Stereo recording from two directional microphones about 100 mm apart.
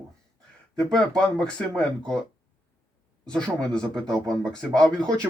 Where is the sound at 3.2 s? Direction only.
5° left (ahead or behind).